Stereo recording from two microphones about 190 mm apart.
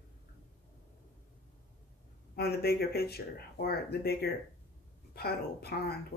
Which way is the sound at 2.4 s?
55° left (ahead or behind).